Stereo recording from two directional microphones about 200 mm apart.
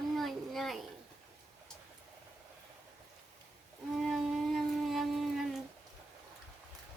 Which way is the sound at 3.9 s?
Centre (ahead or behind).